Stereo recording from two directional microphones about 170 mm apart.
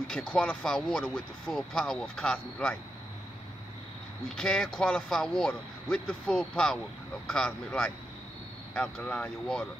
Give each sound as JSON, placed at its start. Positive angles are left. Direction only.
{"t": 0.1, "sound": "speech", "side_deg": 5}
{"t": 4.4, "sound": "speech", "side_deg": 5}